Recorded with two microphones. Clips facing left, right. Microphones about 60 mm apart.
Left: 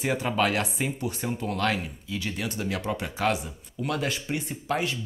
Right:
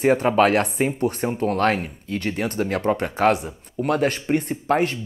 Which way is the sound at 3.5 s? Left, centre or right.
Right.